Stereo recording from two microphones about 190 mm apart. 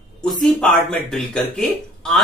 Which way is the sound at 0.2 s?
5° left (ahead or behind).